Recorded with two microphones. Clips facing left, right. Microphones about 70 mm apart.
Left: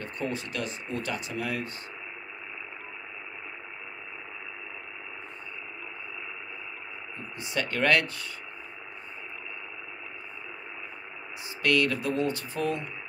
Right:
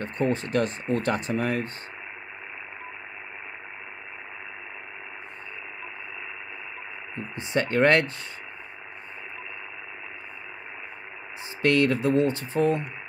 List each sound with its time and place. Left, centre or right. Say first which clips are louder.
0.0 s speech: right 7 dB; right
7.2 s speech: right 6 dB; right
11.6 s speech: right 4 dB; right